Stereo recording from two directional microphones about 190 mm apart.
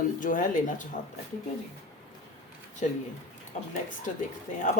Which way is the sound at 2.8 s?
40° left (ahead or behind).